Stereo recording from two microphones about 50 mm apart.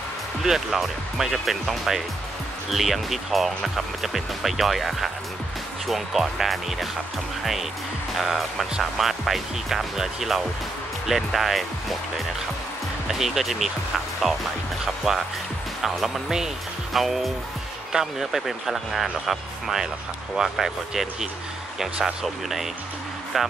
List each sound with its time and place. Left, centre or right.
0.4 s speech: centre
8.1 s speech: centre
13.1 s speech: centre
15.8 s speech: centre